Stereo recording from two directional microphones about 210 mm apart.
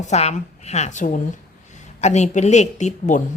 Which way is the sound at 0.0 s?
30° left (ahead or behind).